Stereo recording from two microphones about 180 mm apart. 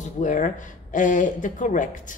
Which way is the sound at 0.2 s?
45° left (ahead or behind).